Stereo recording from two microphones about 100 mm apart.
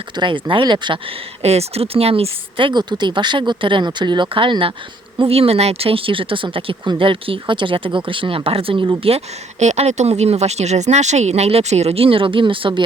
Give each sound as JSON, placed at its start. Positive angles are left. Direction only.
{"t": 0.2, "sound": "speech", "side_deg": -55}
{"t": 1.4, "sound": "speech", "side_deg": -90}
{"t": 5.3, "sound": "speech", "side_deg": -85}
{"t": 9.7, "sound": "speech", "side_deg": -90}